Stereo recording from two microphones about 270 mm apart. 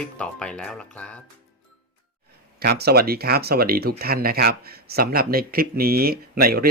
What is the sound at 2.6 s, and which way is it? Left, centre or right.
Speech, right.